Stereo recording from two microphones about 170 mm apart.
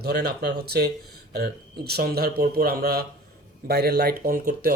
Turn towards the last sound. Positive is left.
turn(degrees=-60)  # may be behind; listen again after turning